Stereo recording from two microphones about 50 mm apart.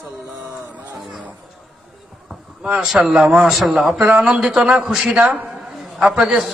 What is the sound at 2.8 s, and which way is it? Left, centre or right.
Speech, centre.